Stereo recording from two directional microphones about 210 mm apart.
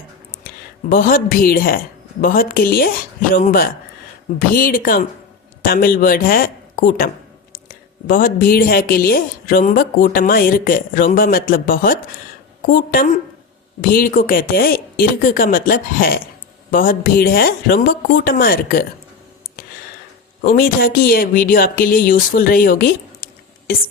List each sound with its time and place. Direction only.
0.9 s a woman's voice: 40° left (ahead or behind)
20.4 s speech: 45° left (ahead or behind)